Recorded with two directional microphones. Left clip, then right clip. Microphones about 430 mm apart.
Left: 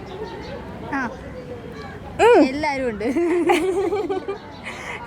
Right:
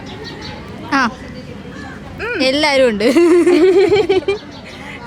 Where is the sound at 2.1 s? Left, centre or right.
Left.